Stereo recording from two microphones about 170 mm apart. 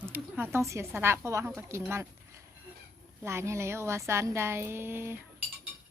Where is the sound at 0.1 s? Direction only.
10° right (ahead or behind).